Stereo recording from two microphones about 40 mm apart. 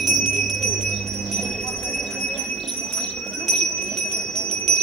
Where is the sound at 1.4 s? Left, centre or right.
Centre.